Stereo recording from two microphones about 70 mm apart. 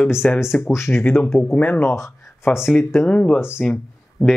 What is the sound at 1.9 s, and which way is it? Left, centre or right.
Speech, left.